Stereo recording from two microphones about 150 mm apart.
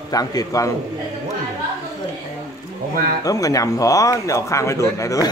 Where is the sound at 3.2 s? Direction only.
25° left (ahead or behind).